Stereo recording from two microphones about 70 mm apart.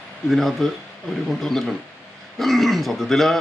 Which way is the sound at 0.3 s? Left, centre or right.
Centre.